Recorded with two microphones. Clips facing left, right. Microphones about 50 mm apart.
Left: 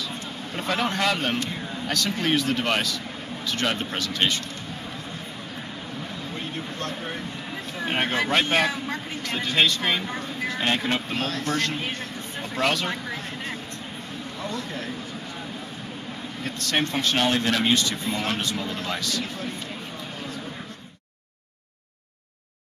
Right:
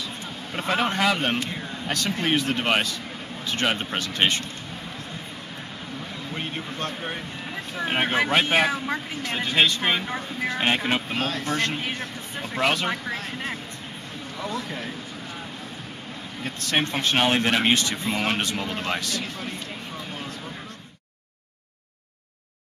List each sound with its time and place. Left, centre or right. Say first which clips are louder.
0.6 s speech: right 2 dB; centre
7.7 s speech: right 2 dB; centre
14.4 s speech: right 2 dB; centre
16.4 s speech: right 1 dB; centre; by 19.2 s right